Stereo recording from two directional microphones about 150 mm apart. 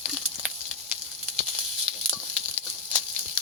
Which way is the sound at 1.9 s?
Centre (ahead or behind).